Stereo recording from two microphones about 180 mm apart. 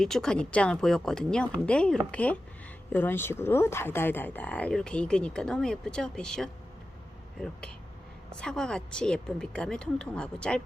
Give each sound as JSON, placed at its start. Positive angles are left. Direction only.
{"t": 0.0, "sound": "a woman's voice", "side_deg": 5}